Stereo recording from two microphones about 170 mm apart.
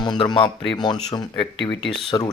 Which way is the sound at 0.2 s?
30° left (ahead or behind).